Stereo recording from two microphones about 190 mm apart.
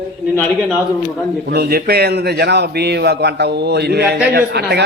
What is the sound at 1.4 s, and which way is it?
A man's voice, 55° right (ahead or behind).